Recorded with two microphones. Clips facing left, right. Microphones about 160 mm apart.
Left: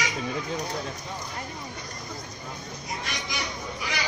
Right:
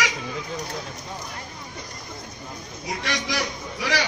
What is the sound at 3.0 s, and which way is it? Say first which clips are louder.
A man's voice: right 9 dB; 90° right.